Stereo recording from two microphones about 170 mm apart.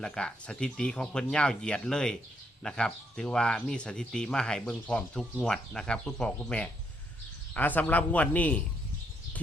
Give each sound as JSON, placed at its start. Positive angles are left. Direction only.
{"t": 0.0, "sound": "a man's voice", "side_deg": 5}